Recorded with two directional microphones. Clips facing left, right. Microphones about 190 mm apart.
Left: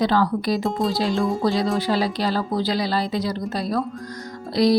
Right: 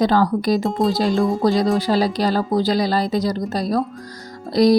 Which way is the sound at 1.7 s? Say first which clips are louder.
Right 3 dB; 40° right (ahead or behind).